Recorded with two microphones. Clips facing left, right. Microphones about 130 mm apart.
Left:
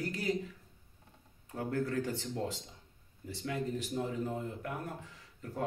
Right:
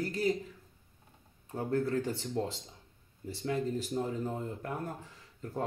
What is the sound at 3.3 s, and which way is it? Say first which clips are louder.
Speech: right 3 dB; 30° right (ahead or behind).